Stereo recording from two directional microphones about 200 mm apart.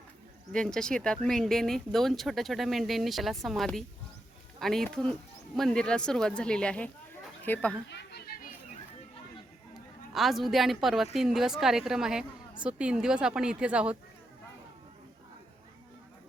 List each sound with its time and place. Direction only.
0.5 s a woman's voice: 5° left (ahead or behind)
7.9 s children playing: 55° left (ahead or behind)
10.1 s a woman's voice: centre (ahead or behind)